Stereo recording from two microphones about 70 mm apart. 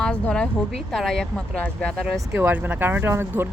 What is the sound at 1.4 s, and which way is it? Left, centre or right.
Speech, centre.